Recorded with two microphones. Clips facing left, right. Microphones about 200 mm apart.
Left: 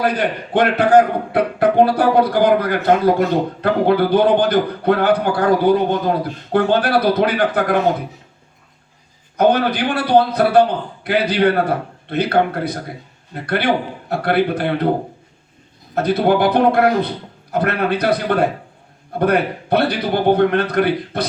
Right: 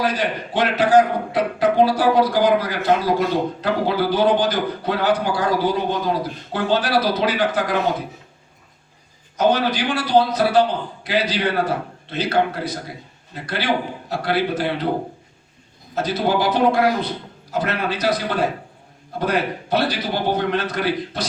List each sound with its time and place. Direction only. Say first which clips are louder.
0.0 s a man's voice: left 3 dB; 55° left (ahead or behind)
9.4 s a man's voice: left 3 dB; 55° left (ahead or behind)
16.0 s a man's voice: left 5 dB; 60° left (ahead or behind)